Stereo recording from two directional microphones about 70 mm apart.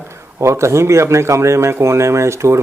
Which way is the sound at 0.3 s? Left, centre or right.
Right.